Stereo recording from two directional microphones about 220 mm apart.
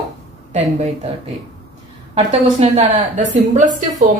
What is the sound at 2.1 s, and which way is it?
A woman's voice, 30° right (ahead or behind).